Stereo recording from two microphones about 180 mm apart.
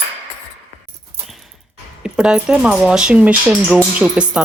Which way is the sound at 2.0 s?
5° right (ahead or behind).